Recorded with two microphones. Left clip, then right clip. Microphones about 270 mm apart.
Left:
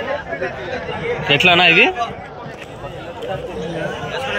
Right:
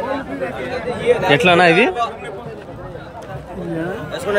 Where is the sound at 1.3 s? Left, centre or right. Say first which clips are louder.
Left 2 dB; centre.